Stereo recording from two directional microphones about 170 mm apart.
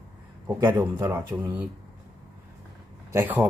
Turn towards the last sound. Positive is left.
turn(degrees=-10)  # may be behind; listen again after turning